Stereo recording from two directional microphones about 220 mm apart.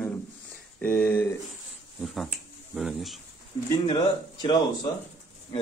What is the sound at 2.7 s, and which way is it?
Speech, centre (ahead or behind).